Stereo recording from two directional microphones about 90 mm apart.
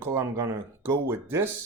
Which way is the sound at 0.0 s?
30° right (ahead or behind).